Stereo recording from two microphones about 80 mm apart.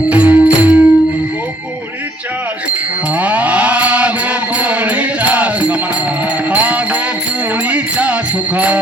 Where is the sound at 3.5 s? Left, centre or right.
Centre.